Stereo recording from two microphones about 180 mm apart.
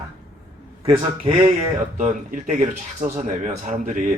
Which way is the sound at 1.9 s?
45° right (ahead or behind).